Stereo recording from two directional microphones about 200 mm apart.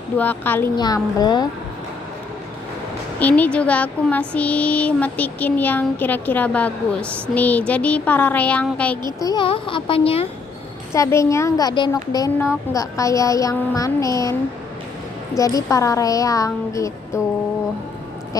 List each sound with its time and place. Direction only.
0.2 s child singing: 10° left (ahead or behind)
0.7 s speech: 20° left (ahead or behind)
3.2 s child singing: 5° left (ahead or behind)
9.2 s speech: 20° left (ahead or behind)
10.9 s child singing: 15° left (ahead or behind)
15.3 s child singing: 15° left (ahead or behind)